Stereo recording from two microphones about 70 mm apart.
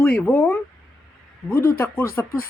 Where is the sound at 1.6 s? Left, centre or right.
Left.